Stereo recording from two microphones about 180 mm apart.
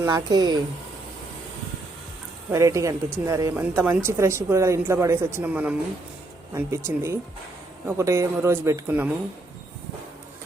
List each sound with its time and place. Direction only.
0.0 s speech: 20° right (ahead or behind)
2.5 s speech: 20° right (ahead or behind)